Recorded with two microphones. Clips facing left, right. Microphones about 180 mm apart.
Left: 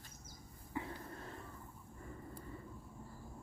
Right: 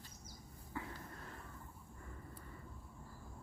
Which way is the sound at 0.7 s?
20° left (ahead or behind).